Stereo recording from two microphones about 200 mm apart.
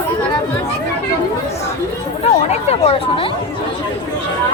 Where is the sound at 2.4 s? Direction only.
30° left (ahead or behind).